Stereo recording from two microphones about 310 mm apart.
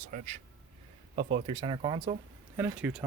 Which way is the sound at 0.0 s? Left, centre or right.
Right.